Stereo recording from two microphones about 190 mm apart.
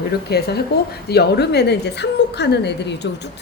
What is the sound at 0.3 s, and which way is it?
A woman's voice, 55° left (ahead or behind).